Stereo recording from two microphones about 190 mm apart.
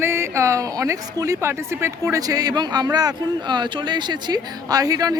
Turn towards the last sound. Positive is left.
turn(degrees=-20)  # may be behind; listen again after turning